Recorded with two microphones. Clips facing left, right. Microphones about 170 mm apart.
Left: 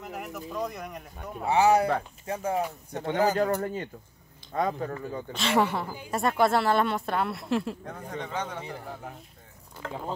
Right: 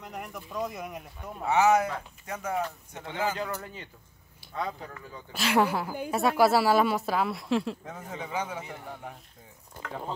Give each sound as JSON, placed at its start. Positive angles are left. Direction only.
{"t": 0.0, "sound": "speech", "side_deg": 5}
{"t": 1.4, "sound": "speech", "side_deg": 30}
{"t": 2.9, "sound": "speech", "side_deg": 40}
{"t": 5.3, "sound": "a woman's voice", "side_deg": 0}
{"t": 9.8, "sound": "speech", "side_deg": -25}